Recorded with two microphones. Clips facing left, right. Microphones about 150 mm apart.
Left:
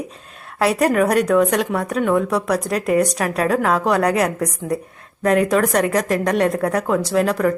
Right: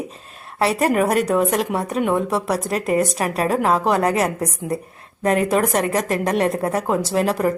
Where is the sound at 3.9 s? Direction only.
Centre (ahead or behind).